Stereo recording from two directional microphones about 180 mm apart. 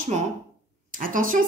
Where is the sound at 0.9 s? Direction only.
50° right (ahead or behind).